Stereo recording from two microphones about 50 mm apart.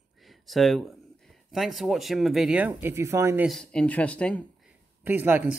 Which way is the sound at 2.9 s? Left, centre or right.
Right.